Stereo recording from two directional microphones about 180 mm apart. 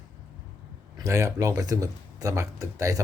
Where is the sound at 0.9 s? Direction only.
15° right (ahead or behind).